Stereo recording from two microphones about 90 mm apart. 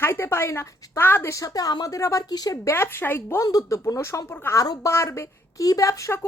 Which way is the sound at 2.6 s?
25° left (ahead or behind).